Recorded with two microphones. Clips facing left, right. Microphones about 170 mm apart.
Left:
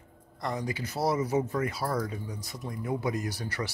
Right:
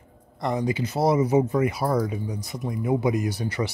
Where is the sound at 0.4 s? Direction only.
20° right (ahead or behind).